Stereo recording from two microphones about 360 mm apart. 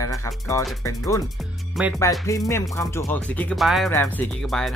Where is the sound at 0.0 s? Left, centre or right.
Centre.